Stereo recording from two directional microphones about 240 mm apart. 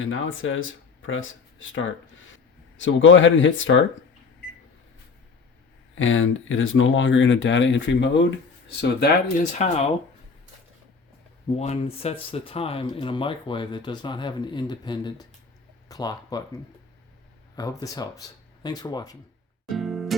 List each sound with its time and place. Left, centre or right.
0.0 s speech: left
5.9 s speech: left
9.4 s speech: left
11.4 s speech: left
17.5 s speech: centre
19.7 s music: centre